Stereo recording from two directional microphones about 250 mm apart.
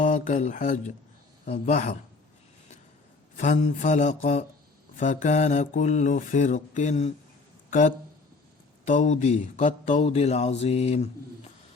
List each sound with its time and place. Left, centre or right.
0.0 s a man's voice: left
3.3 s speech: left